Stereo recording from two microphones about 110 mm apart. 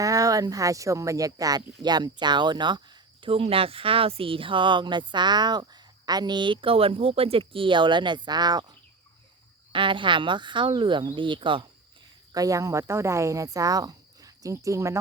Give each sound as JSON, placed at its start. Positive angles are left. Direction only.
{"t": 0.0, "sound": "speech", "side_deg": -30}
{"t": 9.7, "sound": "speech", "side_deg": -50}
{"t": 12.3, "sound": "speech", "side_deg": -30}